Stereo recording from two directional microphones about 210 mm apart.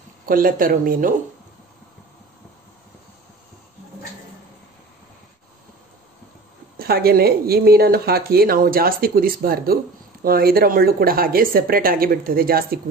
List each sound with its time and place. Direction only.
0.3 s speech: 40° right (ahead or behind)
6.8 s speech: 45° right (ahead or behind)